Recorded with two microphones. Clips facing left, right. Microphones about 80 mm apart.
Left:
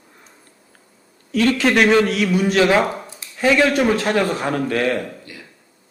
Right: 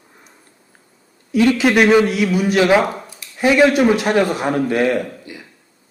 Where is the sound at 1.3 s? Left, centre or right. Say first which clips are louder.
Right 3 dB; centre.